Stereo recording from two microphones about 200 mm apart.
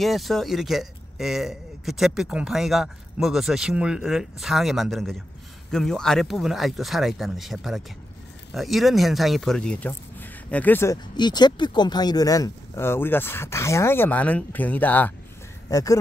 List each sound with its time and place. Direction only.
0.0 s a man's voice: centre (ahead or behind); by 16.0 s 15° left (ahead or behind)